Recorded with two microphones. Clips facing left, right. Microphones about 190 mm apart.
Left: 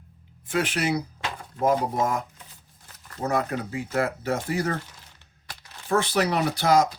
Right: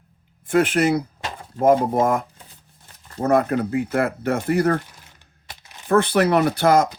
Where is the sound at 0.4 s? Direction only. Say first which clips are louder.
Right 8 dB; 55° right (ahead or behind).